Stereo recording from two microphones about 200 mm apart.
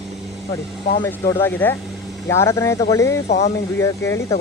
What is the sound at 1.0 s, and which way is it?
Speech, 15° left (ahead or behind).